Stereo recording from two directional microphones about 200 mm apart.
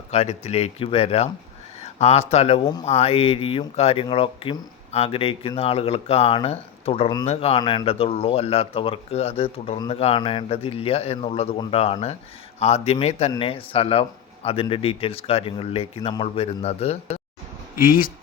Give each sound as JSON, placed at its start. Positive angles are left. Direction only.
{"t": 0.1, "sound": "speech", "side_deg": 30}
{"t": 17.7, "sound": "speech", "side_deg": 45}